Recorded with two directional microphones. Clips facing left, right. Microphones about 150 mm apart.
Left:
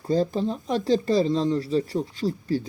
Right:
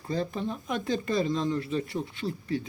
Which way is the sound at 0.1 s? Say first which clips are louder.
Left 7 dB; 35° left (ahead or behind).